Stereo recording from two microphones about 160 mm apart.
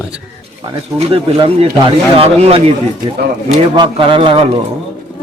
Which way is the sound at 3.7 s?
30° right (ahead or behind).